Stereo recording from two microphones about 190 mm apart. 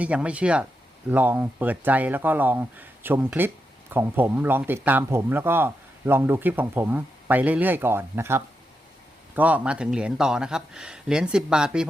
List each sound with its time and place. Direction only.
0.0 s speech: 5° right (ahead or behind)